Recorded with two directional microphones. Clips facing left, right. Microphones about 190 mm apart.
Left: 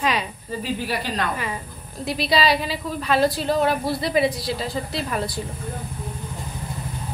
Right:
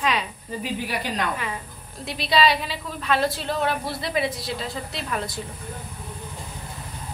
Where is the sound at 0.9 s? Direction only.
15° right (ahead or behind).